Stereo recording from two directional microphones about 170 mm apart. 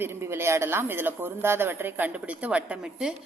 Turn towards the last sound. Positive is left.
turn(degrees=-5)  # may be behind; listen again after turning